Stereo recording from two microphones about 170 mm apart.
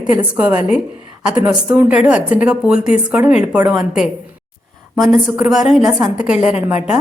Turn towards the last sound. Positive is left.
turn(degrees=-5)  # may be behind; listen again after turning